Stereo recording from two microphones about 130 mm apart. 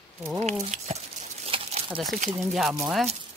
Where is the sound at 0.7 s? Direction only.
60° right (ahead or behind).